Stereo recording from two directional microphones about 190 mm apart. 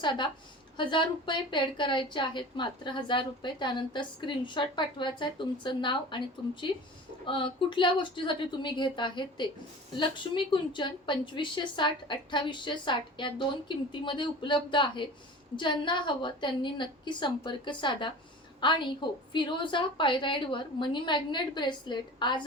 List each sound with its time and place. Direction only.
0.0 s a woman's voice: 25° left (ahead or behind)